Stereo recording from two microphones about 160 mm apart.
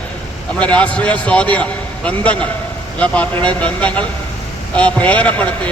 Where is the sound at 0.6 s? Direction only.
5° left (ahead or behind).